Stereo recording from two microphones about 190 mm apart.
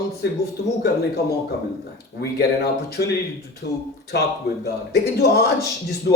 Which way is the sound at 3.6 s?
60° left (ahead or behind).